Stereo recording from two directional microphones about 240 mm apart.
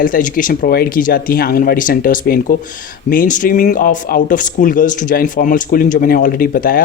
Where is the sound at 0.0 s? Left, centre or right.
Left.